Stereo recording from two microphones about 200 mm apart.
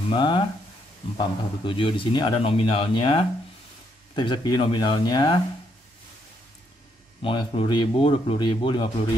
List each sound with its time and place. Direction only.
0.1 s a man's voice: 25° left (ahead or behind)
7.2 s a man's voice: 25° left (ahead or behind)